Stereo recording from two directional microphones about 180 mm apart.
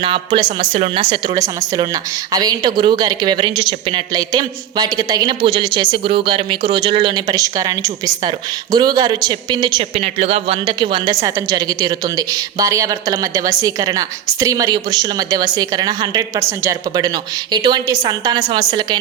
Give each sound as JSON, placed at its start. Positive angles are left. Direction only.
{"t": 0.0, "sound": "a woman's voice", "side_deg": -30}